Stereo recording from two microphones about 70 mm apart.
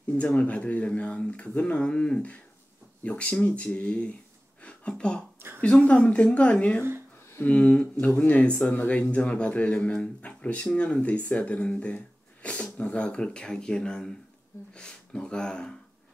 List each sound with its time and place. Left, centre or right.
0.2 s speech: centre